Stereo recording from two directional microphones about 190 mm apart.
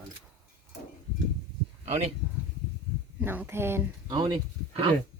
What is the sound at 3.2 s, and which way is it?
Speech, 10° right (ahead or behind).